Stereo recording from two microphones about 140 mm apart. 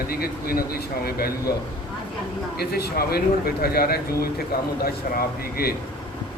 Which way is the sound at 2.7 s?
90° left.